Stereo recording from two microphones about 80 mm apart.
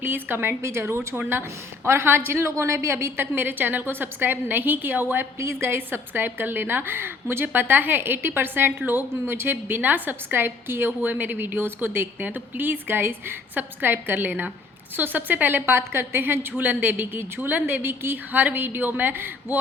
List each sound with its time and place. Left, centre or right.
0.0 s a woman's voice: right